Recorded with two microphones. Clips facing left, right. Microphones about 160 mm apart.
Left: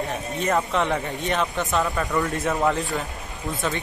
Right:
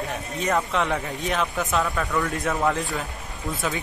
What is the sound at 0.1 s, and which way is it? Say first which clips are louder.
Speech: even; centre (ahead or behind).